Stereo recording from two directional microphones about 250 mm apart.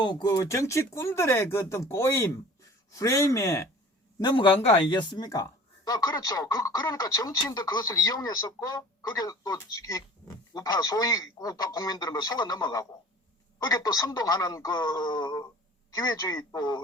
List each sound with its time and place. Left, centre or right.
0.0 s speech: centre